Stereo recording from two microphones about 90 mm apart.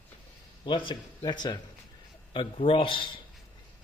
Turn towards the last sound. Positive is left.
turn(degrees=70)  # may be behind; listen again after turning